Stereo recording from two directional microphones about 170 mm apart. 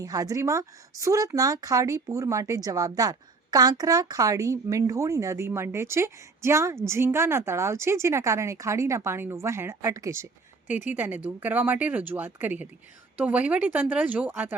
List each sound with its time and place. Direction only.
0.0 s speech: 20° right (ahead or behind)